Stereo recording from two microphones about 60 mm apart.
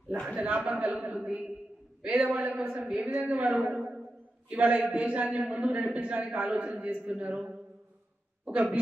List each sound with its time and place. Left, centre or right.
0.1 s a man's voice: centre
4.5 s a man's voice: right